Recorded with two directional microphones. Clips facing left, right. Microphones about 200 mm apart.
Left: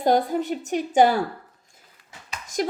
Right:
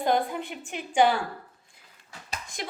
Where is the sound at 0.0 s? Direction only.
40° left (ahead or behind).